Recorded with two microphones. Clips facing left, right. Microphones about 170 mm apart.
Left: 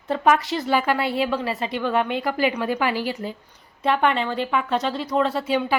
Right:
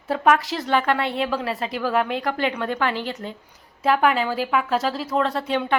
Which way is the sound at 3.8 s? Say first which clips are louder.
Right 1 dB; 5° right (ahead or behind).